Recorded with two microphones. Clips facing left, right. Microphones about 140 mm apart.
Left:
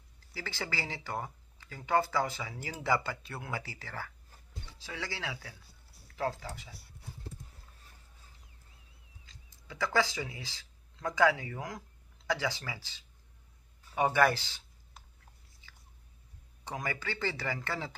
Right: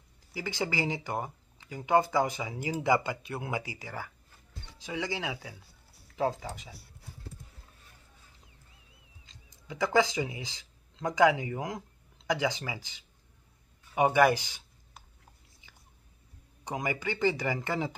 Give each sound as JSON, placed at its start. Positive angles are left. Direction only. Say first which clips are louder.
{"t": 0.3, "sound": "speech", "louder": "right 6 dB", "side_deg": -15}
{"t": 9.2, "sound": "speech", "louder": "right 2 dB", "side_deg": -20}
{"t": 13.9, "sound": "a sound", "louder": "right 4 dB", "side_deg": -15}
{"t": 16.6, "sound": "speech", "louder": "right 4 dB", "side_deg": -15}